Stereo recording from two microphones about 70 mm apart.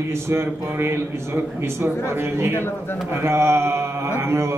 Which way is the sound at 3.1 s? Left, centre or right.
Right.